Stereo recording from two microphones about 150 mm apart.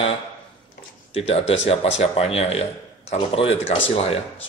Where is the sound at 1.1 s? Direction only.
40° left (ahead or behind).